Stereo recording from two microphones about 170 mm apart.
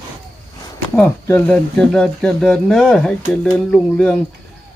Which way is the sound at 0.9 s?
10° left (ahead or behind).